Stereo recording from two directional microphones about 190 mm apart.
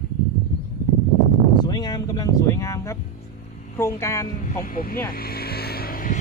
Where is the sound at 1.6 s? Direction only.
20° left (ahead or behind).